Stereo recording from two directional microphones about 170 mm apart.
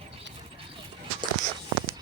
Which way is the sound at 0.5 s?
35° right (ahead or behind).